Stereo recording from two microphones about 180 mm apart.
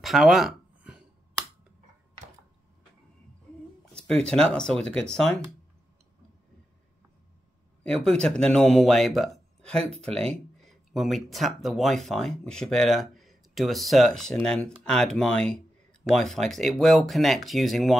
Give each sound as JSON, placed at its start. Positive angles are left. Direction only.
{"t": 0.0, "sound": "a sound", "side_deg": 0}
{"t": 3.9, "sound": "speech", "side_deg": 5}
{"t": 7.8, "sound": "speech", "side_deg": 5}
{"t": 9.8, "sound": "speech", "side_deg": -35}
{"t": 10.6, "sound": "speech", "side_deg": 0}